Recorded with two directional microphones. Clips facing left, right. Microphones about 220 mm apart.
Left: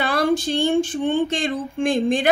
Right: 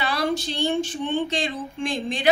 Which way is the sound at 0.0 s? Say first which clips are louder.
Left 5 dB; 50° left (ahead or behind).